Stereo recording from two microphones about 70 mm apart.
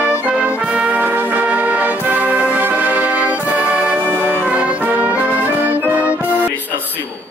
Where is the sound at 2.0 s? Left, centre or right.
Right.